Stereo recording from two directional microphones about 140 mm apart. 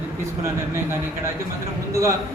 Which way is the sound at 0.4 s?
20° right (ahead or behind).